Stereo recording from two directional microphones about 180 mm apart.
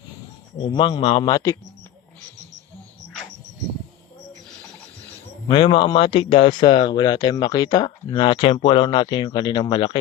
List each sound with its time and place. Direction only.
0.6 s speech: 25° left (ahead or behind)
5.5 s speech: 30° left (ahead or behind)